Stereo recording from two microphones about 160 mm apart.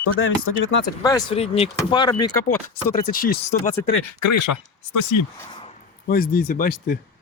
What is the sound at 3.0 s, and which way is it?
Speech, 65° left (ahead or behind).